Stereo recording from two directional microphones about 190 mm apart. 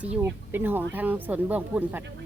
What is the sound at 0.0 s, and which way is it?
Speech, 10° right (ahead or behind).